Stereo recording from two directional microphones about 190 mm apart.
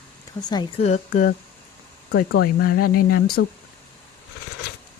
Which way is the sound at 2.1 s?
55° left (ahead or behind).